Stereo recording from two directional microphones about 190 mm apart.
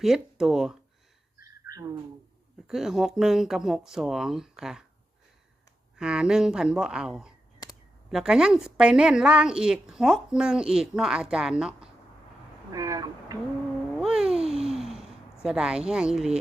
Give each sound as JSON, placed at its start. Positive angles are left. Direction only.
{"t": 0.0, "sound": "speech", "side_deg": 0}
{"t": 1.4, "sound": "a sound", "side_deg": -20}
{"t": 2.6, "sound": "a woman's voice", "side_deg": 0}
{"t": 6.0, "sound": "a woman's voice", "side_deg": -5}
{"t": 12.7, "sound": "speech", "side_deg": -20}
{"t": 14.0, "sound": "a sound", "side_deg": -5}
{"t": 15.4, "sound": "a woman's voice", "side_deg": -5}